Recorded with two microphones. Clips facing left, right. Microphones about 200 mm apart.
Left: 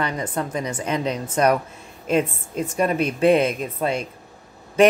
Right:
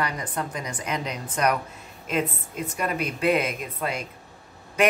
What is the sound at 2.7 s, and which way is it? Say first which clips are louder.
A woman's voice: left 7 dB; 30° left (ahead or behind).